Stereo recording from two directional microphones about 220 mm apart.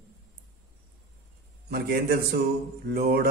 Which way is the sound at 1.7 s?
45° right (ahead or behind).